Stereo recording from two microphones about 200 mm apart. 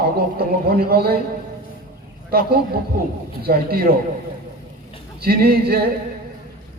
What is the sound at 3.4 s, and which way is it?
Speech, 50° right (ahead or behind).